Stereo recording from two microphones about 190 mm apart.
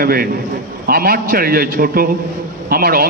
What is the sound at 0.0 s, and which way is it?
A man's voice, 50° right (ahead or behind).